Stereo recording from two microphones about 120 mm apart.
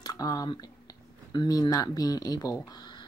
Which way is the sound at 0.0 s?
30° left (ahead or behind).